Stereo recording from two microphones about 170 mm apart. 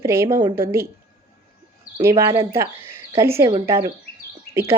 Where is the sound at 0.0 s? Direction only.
15° right (ahead or behind).